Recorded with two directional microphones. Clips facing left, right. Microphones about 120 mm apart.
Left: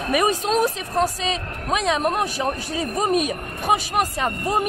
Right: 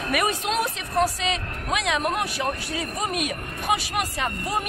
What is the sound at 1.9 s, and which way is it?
Speech, 35° left (ahead or behind).